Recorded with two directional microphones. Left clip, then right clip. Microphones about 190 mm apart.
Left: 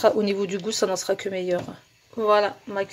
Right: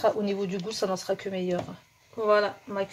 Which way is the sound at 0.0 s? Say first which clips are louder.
Left 5 dB; 40° left (ahead or behind).